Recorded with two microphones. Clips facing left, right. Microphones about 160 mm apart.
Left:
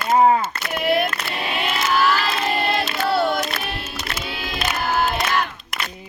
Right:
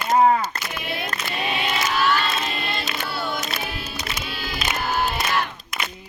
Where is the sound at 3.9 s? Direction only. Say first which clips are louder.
Left 2 dB; 60° left (ahead or behind).